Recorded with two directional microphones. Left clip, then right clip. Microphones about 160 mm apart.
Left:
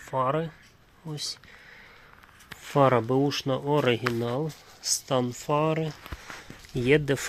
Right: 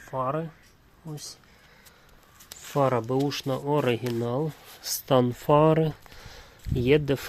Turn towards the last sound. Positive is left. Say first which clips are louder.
# even
turn(degrees=-5)  # may be behind; listen again after turning